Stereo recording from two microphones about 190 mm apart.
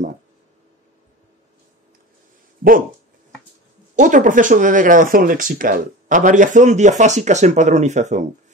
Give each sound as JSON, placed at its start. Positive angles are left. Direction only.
{"t": 3.9, "sound": "speech", "side_deg": -40}